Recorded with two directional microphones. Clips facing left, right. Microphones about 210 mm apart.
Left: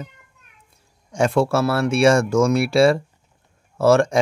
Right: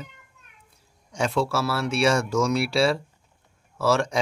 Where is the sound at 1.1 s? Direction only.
50° left (ahead or behind).